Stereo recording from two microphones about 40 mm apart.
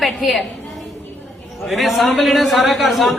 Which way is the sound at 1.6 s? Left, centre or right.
Centre.